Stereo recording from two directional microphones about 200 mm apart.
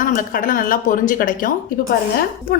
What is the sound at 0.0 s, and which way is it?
A woman's voice, 40° left (ahead or behind).